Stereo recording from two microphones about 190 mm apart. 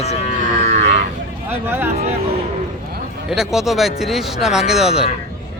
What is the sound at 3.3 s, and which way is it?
Speech, centre (ahead or behind).